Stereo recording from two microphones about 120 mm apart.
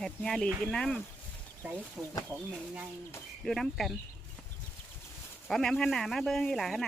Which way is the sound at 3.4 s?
Centre (ahead or behind).